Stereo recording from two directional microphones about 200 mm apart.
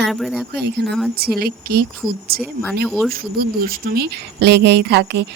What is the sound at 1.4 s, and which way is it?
Speech, 50° right (ahead or behind).